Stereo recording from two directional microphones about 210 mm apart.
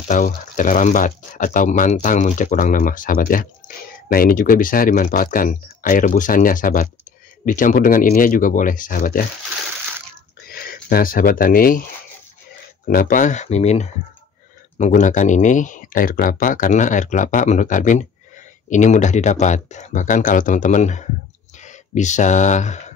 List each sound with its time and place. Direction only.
0.1 s speech: 35° left (ahead or behind)
10.5 s speech: 45° left (ahead or behind)
12.8 s speech: 45° left (ahead or behind)